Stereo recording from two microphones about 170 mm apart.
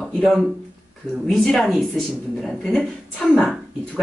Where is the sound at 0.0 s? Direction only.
5° left (ahead or behind).